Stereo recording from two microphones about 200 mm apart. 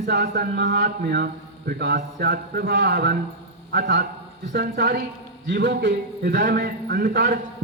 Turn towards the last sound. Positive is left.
turn(degrees=-45)  # may be behind; listen again after turning